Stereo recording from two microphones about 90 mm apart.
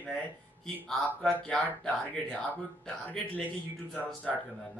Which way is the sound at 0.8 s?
5° left (ahead or behind).